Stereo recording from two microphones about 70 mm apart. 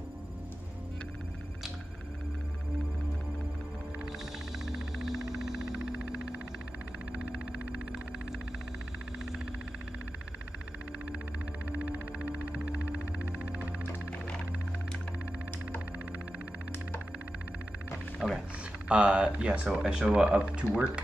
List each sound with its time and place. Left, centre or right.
5.0 s music: centre
11.7 s music: right
18.2 s a sound: centre
18.9 s speech: centre